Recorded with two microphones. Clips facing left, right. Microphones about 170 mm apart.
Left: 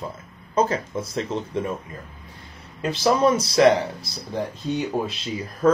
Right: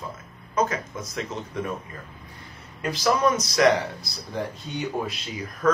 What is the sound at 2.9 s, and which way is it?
Speech, 25° left (ahead or behind).